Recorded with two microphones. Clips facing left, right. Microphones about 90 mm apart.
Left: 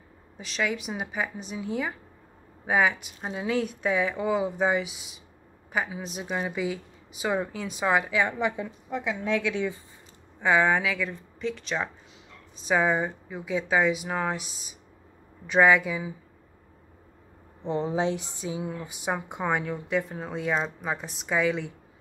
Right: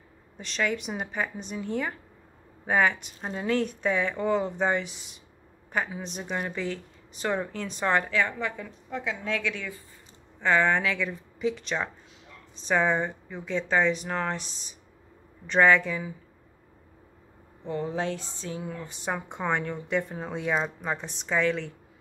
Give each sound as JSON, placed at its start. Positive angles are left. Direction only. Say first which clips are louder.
{"t": 0.4, "sound": "a woman's voice", "louder": "even", "side_deg": 5}
{"t": 10.4, "sound": "a woman's voice", "louder": "left 1 dB", "side_deg": 10}
{"t": 17.6, "sound": "a woman's voice", "louder": "left 3 dB", "side_deg": 20}